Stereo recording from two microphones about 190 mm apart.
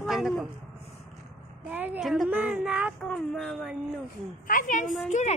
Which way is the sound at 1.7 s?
10° right (ahead or behind).